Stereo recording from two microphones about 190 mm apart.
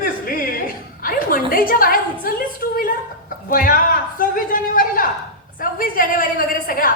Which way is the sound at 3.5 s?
50° left (ahead or behind).